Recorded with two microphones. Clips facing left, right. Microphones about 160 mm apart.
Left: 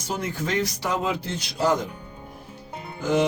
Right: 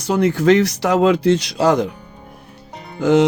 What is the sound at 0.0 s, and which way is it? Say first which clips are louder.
Speech: right 13 dB; 75° right (ahead or behind).